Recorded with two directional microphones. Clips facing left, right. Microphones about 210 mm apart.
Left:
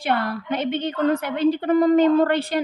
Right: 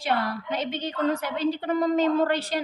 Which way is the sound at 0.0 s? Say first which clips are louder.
Left 3 dB; 55° left (ahead or behind).